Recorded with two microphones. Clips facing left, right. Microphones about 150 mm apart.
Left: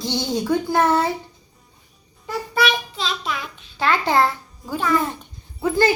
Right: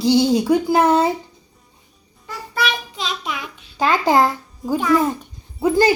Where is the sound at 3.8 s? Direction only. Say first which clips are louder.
Right 3 dB; 40° right (ahead or behind).